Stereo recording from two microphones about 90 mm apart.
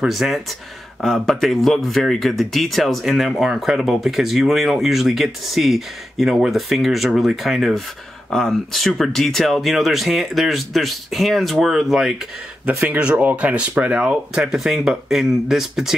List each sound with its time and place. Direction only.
0.0 s speech: centre (ahead or behind)
12.6 s speech: 15° right (ahead or behind)